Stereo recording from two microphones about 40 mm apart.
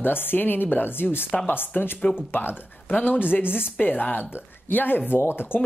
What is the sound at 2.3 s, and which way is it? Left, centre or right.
Speech, left.